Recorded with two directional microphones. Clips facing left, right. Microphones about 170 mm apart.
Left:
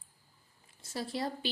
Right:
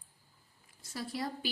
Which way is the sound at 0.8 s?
25° left (ahead or behind).